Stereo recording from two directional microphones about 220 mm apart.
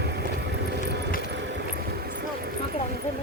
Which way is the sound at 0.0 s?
50° right (ahead or behind).